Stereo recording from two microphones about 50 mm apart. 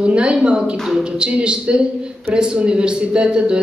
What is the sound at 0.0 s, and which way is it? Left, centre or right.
A woman's voice, right.